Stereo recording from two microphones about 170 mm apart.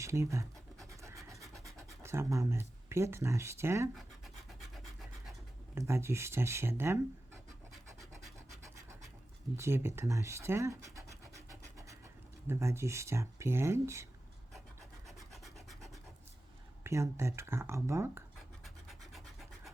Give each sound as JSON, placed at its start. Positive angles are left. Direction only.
{"t": 0.0, "sound": "speech", "side_deg": -20}
{"t": 1.1, "sound": "scratch", "side_deg": -20}
{"t": 1.6, "sound": "speech", "side_deg": -15}
{"t": 3.9, "sound": "a sound", "side_deg": 0}
{"t": 5.7, "sound": "speech", "side_deg": -15}
{"t": 9.6, "sound": "scratch", "side_deg": -15}
{"t": 12.5, "sound": "speech", "side_deg": -15}
{"t": 15.0, "sound": "rub", "side_deg": 0}
{"t": 16.8, "sound": "speech", "side_deg": -15}
{"t": 18.6, "sound": "scratch", "side_deg": 0}